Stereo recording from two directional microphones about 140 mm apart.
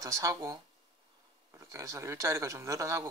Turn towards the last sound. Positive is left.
turn(degrees=-20)  # may be behind; listen again after turning